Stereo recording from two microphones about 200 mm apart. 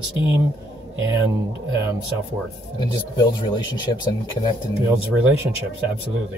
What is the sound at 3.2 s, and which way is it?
Speech, 25° left (ahead or behind).